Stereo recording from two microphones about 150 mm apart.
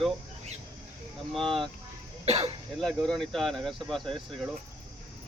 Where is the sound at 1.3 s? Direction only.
Centre (ahead or behind).